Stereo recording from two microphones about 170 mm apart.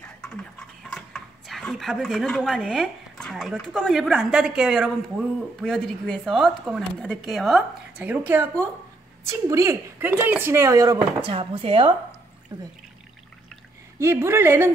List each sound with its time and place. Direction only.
0.9 s a woman's voice: centre (ahead or behind); by 11.0 s 20° right (ahead or behind)
11.2 s speech: 30° right (ahead or behind)
13.9 s speech: 15° right (ahead or behind)